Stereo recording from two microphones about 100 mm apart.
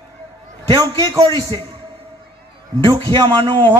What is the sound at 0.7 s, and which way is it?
Speech, 35° right (ahead or behind).